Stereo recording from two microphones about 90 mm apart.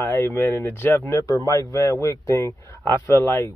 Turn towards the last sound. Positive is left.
turn(degrees=30)  # may be behind; listen again after turning